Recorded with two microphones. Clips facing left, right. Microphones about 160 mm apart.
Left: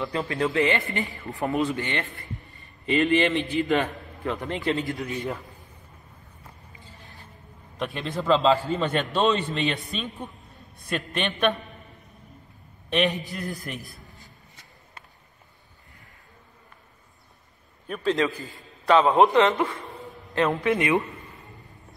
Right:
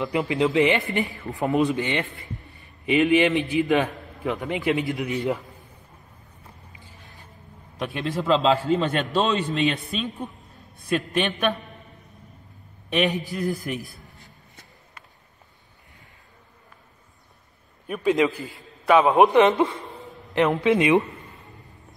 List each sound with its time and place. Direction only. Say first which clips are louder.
0.0 s a man's voice: right 4 dB; 15° right (ahead or behind)
7.8 s a man's voice: right 2 dB; centre (ahead or behind)
12.9 s a man's voice: right 1 dB; centre (ahead or behind)
17.8 s a man's voice: right 3 dB; 5° right (ahead or behind)
18.1 s a man's voice: right 5 dB; 20° right (ahead or behind)